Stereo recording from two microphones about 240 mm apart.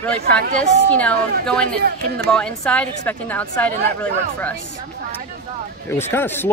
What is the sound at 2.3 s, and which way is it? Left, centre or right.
Speech, centre.